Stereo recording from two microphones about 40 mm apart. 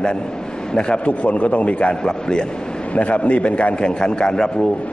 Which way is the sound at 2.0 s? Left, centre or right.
Left.